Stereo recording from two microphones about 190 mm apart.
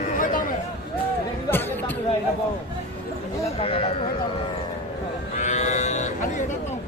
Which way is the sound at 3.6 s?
30° left (ahead or behind).